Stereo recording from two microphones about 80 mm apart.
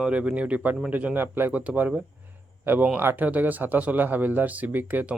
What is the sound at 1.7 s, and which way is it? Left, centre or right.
A man's voice, centre.